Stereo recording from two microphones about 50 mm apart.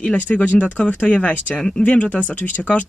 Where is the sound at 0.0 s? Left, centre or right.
Left.